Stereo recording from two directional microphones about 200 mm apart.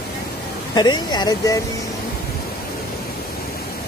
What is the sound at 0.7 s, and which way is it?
Speech, 20° left (ahead or behind).